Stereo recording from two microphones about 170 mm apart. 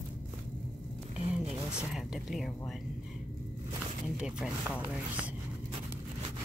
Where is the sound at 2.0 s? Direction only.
Centre (ahead or behind).